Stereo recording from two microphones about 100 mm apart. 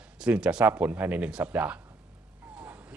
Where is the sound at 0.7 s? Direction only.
20° right (ahead or behind).